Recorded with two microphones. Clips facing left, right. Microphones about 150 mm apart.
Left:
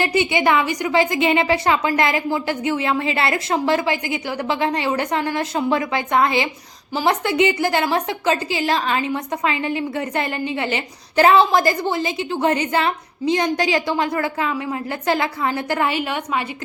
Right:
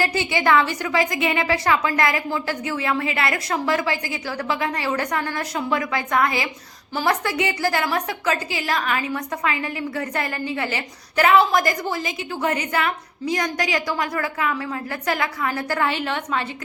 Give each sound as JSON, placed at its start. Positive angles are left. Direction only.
{"t": 0.0, "sound": "a woman's voice", "side_deg": 20}